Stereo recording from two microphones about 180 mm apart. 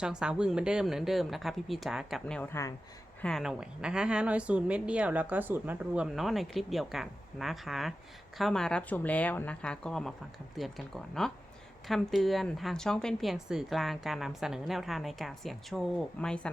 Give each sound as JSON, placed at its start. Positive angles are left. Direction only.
{"t": 0.0, "sound": "a woman's voice", "side_deg": -5}
{"t": 3.2, "sound": "a woman's voice", "side_deg": 5}